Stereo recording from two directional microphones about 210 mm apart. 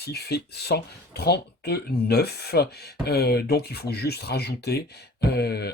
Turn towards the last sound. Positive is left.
turn(degrees=50)  # may be behind; listen again after turning